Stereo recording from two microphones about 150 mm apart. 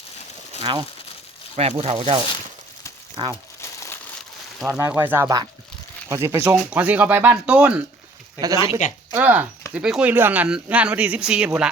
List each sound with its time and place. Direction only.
0.6 s speech: 35° right (ahead or behind)
3.6 s crumpling: 20° left (ahead or behind)
4.8 s speech: 15° right (ahead or behind)
8.4 s speech: 20° right (ahead or behind)
9.1 s speech: 10° right (ahead or behind)